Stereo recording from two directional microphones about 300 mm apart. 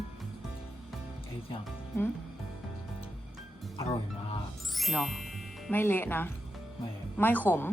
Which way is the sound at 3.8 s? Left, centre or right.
Centre.